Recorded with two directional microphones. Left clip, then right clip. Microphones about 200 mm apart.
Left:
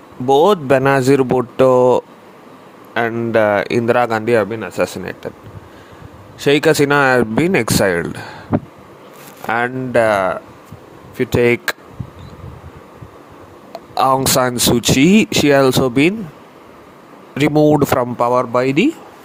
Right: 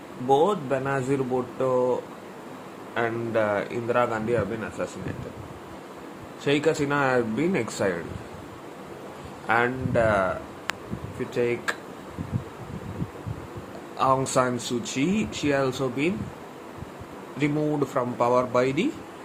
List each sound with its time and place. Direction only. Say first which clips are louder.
0.3 s speech: left 10 dB; 50° left (ahead or behind)
6.4 s speech: left 11 dB; 55° left (ahead or behind)
9.5 s speech: left 6 dB; 55° left (ahead or behind)
13.9 s speech: left 9 dB; 55° left (ahead or behind)
17.3 s speech: left 14 dB; 55° left (ahead or behind)
18.2 s speech: left 4 dB; 40° left (ahead or behind)